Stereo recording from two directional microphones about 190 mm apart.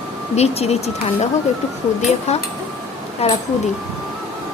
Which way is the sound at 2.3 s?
35° left (ahead or behind).